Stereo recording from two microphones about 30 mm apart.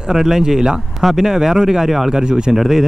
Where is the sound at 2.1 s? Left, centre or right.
Right.